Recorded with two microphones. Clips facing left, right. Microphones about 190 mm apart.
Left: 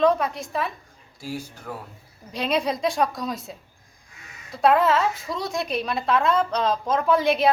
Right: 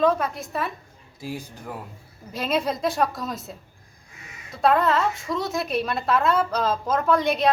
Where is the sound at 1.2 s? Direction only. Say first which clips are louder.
Even; 15° right (ahead or behind).